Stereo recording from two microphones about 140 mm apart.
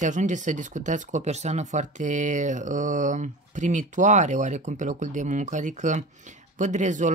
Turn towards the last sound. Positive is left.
turn(degrees=-65)  # may be behind; listen again after turning